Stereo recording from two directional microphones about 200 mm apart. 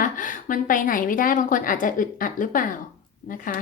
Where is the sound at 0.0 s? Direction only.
40° left (ahead or behind).